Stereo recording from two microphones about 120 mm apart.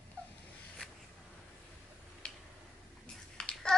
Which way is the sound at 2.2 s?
10° left (ahead or behind).